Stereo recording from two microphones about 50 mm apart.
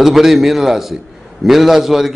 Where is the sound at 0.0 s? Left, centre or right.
Centre.